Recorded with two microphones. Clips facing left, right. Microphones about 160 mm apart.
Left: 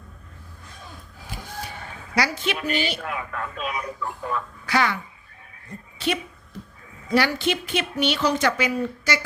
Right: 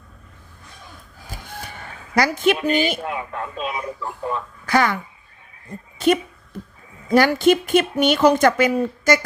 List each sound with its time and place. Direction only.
2.1 s a woman's voice: 50° right (ahead or behind)
3.0 s speech: 30° right (ahead or behind)
4.6 s speech: 45° right (ahead or behind)
6.0 s a woman's voice: 45° right (ahead or behind)